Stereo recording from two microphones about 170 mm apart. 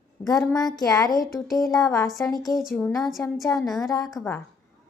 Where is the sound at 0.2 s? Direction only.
10° left (ahead or behind).